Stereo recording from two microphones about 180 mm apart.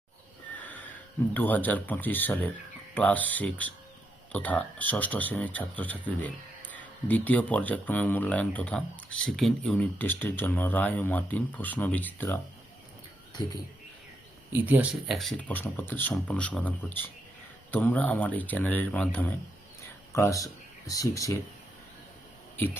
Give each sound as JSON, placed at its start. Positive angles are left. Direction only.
{"t": 0.6, "sound": "a sound", "side_deg": 10}
{"t": 1.3, "sound": "speech", "side_deg": 10}
{"t": 13.4, "sound": "speech", "side_deg": 20}
{"t": 14.5, "sound": "speech", "side_deg": -10}
{"t": 22.5, "sound": "speech", "side_deg": 10}